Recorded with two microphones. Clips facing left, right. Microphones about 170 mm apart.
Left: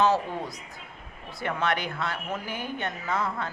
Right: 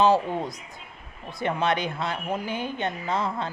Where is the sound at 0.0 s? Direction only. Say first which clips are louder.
Right 3 dB; 15° right (ahead or behind).